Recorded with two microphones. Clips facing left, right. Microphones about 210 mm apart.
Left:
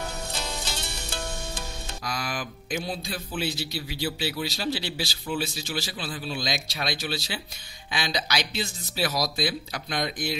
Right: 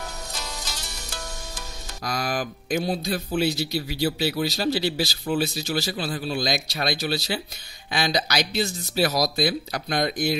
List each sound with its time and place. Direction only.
0.3 s music: 30° left (ahead or behind)
2.0 s a man's voice: 40° right (ahead or behind)